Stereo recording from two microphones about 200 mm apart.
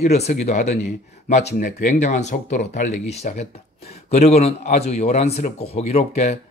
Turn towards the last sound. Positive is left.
turn(degrees=35)  # may be behind; listen again after turning